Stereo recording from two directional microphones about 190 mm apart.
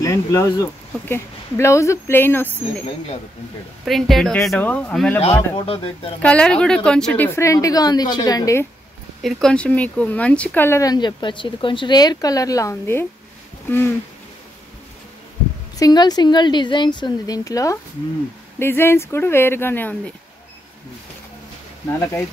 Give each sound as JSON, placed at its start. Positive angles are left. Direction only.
{"t": 0.0, "sound": "speech", "side_deg": 15}
{"t": 3.8, "sound": "speech", "side_deg": 0}
{"t": 5.3, "sound": "a woman's voice", "side_deg": 20}
{"t": 6.2, "sound": "speech", "side_deg": 5}
{"t": 9.2, "sound": "speech", "side_deg": 0}
{"t": 15.8, "sound": "a woman's voice", "side_deg": 20}